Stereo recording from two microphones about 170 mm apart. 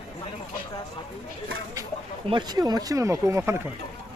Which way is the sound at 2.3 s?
25° right (ahead or behind).